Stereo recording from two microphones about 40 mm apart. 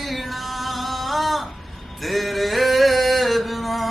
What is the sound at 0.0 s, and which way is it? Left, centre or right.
Music, centre.